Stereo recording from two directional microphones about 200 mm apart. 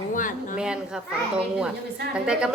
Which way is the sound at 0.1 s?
40° left (ahead or behind).